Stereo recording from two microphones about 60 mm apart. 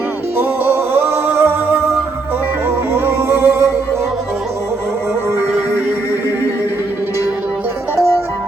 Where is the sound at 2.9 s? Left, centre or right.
Right.